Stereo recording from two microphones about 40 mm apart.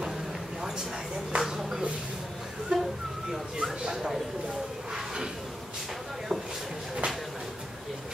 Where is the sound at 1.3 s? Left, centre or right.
Centre.